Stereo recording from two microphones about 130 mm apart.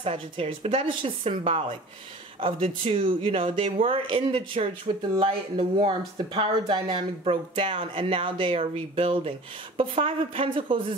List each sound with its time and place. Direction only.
0.0 s speech: 45° right (ahead or behind)